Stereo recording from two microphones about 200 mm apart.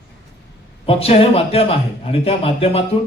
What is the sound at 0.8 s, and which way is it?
A man's voice, 30° left (ahead or behind).